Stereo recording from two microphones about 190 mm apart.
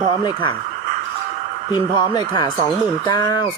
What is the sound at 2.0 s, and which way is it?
Speech, 20° left (ahead or behind).